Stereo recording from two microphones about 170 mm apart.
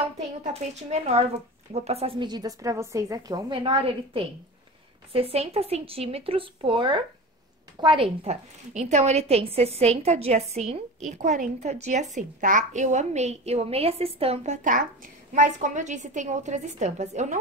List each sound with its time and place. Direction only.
0.4 s a woman's voice: 40° right (ahead or behind)